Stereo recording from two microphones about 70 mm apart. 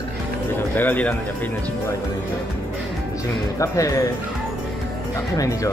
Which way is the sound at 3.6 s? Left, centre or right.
Left.